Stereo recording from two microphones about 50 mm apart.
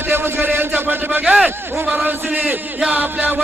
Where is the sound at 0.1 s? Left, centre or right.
Right.